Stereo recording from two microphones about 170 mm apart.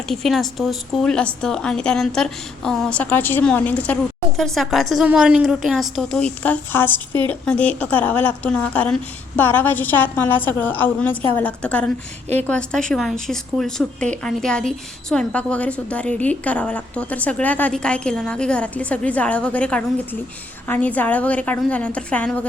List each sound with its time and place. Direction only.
0.1 s a woman's voice: centre (ahead or behind)